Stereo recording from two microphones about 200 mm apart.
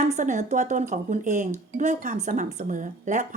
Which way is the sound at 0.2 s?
40° right (ahead or behind).